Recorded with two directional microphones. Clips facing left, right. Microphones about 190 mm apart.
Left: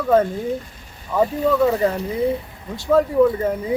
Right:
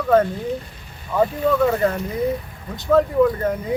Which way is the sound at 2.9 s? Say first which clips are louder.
Left 1 dB; 10° left (ahead or behind).